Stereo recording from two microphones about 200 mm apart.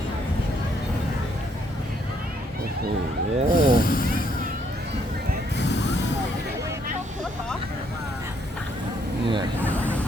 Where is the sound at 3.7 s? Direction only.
45° left (ahead or behind).